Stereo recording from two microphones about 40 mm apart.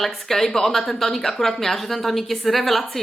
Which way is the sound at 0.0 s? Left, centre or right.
Centre.